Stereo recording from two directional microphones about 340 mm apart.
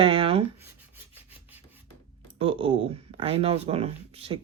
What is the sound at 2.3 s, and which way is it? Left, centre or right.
Speech, centre.